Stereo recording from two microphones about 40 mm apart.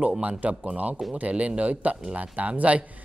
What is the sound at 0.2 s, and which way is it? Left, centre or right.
Speech, right.